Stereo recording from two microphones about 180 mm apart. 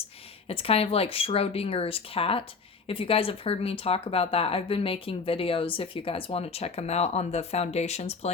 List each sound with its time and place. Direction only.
0.4 s speech: 35° left (ahead or behind)